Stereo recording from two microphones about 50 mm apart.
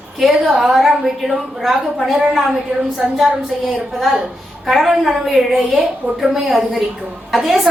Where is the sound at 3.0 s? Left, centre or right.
Centre.